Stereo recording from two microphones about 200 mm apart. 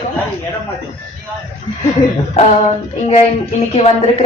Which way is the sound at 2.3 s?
30° left (ahead or behind).